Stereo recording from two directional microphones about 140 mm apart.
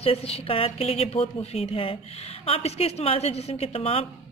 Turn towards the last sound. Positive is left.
turn(degrees=45)  # may be behind; listen again after turning